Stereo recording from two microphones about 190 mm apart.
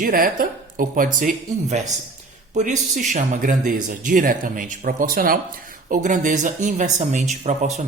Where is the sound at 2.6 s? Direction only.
40° right (ahead or behind).